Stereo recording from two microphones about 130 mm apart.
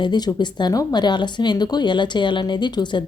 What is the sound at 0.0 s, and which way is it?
Speech, 35° left (ahead or behind).